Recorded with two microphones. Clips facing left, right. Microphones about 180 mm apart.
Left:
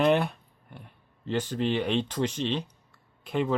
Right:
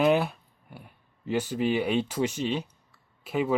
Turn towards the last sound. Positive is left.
turn(degrees=-5)  # may be behind; listen again after turning